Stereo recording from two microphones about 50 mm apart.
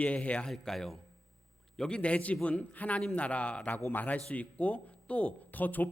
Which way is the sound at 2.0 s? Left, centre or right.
Left.